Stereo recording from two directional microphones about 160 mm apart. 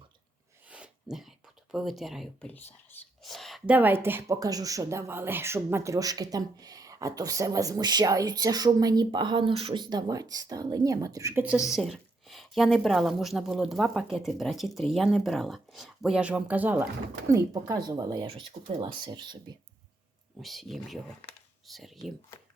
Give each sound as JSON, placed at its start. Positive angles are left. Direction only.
{"t": 0.7, "sound": "sneeze", "side_deg": -5}
{"t": 1.7, "sound": "a woman's voice", "side_deg": 0}
{"t": 3.2, "sound": "a sound", "side_deg": 0}
{"t": 3.8, "sound": "speech", "side_deg": -15}
{"t": 11.4, "sound": "a woman's voice", "side_deg": -5}
{"t": 17.3, "sound": "speech", "side_deg": -20}
{"t": 20.4, "sound": "a woman's voice", "side_deg": 0}